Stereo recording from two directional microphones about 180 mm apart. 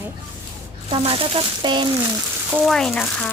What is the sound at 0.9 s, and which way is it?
Speech, 30° right (ahead or behind).